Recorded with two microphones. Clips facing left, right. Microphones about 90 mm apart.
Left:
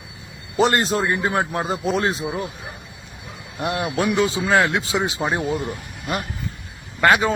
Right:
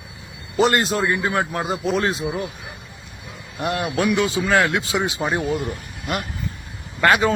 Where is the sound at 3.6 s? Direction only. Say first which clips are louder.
Even; 20° left (ahead or behind).